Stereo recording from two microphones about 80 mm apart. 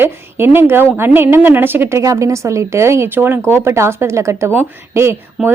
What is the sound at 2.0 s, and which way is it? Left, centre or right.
Speech, right.